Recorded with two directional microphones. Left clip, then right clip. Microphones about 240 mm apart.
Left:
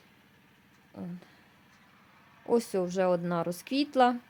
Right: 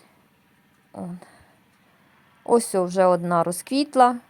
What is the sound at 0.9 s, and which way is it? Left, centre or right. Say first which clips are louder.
Speech: right 9 dB; centre.